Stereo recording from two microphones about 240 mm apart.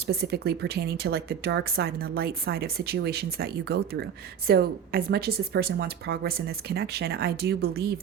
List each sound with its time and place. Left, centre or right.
0.1 s speech: right